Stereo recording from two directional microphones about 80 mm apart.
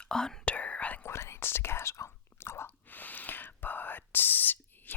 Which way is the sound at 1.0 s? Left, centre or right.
Left.